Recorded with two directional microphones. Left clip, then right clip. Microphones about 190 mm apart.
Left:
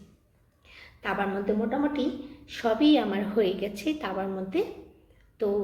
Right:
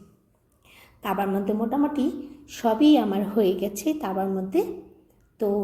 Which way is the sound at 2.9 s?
30° right (ahead or behind).